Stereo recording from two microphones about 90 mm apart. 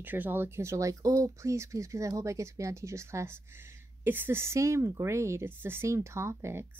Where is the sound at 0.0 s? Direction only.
20° right (ahead or behind).